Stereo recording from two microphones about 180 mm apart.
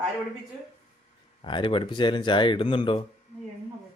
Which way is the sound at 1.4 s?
25° left (ahead or behind).